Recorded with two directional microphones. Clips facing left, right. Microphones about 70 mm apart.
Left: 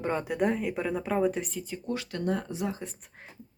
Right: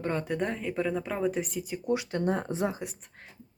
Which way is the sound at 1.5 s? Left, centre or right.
Centre.